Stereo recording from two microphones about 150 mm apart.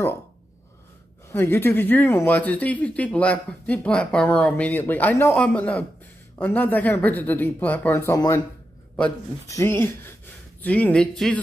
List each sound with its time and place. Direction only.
1.3 s speech: 15° left (ahead or behind)
9.5 s speech: 20° left (ahead or behind)